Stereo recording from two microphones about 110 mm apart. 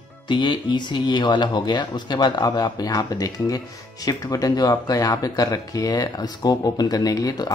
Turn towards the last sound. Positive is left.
turn(degrees=35)  # may be behind; listen again after turning